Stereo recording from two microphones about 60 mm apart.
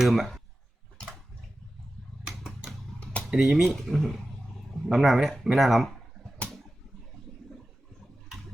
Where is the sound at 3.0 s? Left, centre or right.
Left.